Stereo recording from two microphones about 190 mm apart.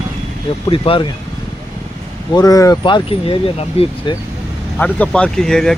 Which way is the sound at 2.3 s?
20° left (ahead or behind).